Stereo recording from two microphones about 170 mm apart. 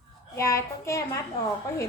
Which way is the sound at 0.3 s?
15° left (ahead or behind).